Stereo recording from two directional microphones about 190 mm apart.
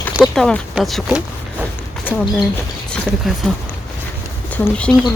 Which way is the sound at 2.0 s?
10° left (ahead or behind).